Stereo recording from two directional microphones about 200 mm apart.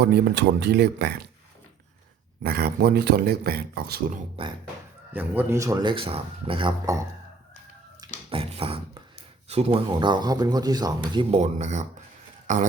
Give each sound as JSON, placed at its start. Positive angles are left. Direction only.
{"t": 0.0, "sound": "speech", "side_deg": -60}
{"t": 2.4, "sound": "speech", "side_deg": -50}
{"t": 5.1, "sound": "speech", "side_deg": -10}
{"t": 8.3, "sound": "beatboxing", "side_deg": -30}
{"t": 9.5, "sound": "speech", "side_deg": -30}